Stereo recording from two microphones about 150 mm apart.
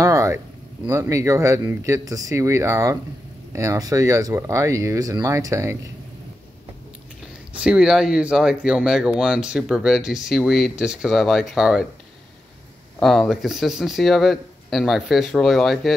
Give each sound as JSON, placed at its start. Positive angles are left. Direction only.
{"t": 0.0, "sound": "a sound", "side_deg": -20}
{"t": 0.8, "sound": "speech", "side_deg": -20}
{"t": 7.6, "sound": "speech", "side_deg": -5}
{"t": 13.0, "sound": "speech", "side_deg": 0}